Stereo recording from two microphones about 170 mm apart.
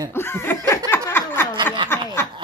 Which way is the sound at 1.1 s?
15° left (ahead or behind).